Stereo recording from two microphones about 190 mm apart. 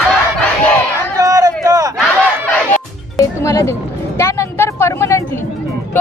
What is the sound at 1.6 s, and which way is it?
Crowd, 15° right (ahead or behind).